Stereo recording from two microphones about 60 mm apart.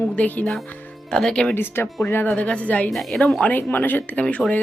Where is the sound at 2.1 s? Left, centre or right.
Left.